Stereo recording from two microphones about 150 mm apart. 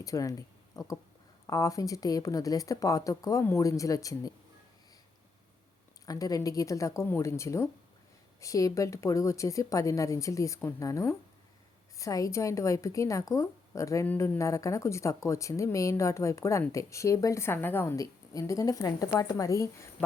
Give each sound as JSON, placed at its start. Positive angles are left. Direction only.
{"t": 0.0, "sound": "a woman's voice", "side_deg": 25}
{"t": 6.1, "sound": "a woman's voice", "side_deg": 25}